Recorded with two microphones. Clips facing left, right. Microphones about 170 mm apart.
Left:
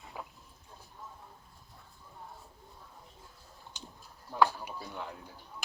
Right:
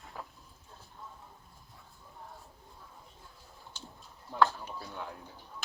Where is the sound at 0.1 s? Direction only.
10° left (ahead or behind).